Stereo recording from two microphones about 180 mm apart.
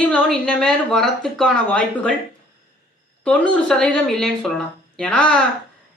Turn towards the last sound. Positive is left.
turn(degrees=5)  # may be behind; listen again after turning